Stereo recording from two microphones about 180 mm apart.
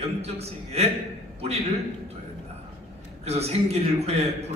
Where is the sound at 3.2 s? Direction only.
35° right (ahead or behind).